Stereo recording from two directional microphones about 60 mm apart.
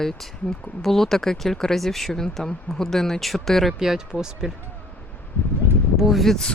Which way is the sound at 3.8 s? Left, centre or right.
Centre.